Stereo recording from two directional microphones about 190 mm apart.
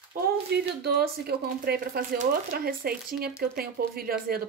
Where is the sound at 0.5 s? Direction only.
60° right (ahead or behind).